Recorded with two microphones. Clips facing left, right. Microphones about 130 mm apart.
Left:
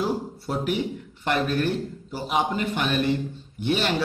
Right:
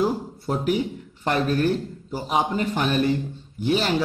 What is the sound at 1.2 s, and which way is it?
A man's voice, 35° right (ahead or behind).